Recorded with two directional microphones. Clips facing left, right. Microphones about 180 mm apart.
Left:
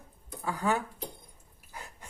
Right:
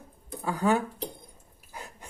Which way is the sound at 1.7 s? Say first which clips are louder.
Right 3 dB; 20° right (ahead or behind).